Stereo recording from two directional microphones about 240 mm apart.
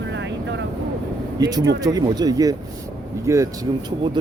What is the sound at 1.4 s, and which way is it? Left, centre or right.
Speech, centre.